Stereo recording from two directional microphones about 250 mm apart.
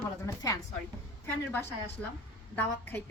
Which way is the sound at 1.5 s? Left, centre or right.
Centre.